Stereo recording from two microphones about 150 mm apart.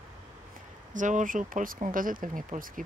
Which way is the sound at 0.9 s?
55° right (ahead or behind).